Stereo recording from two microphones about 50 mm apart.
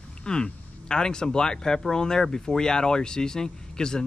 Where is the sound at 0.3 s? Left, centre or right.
Centre.